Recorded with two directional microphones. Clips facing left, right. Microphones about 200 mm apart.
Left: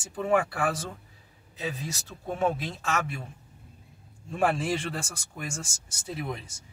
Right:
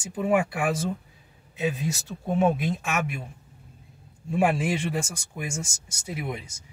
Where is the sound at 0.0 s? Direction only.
15° right (ahead or behind).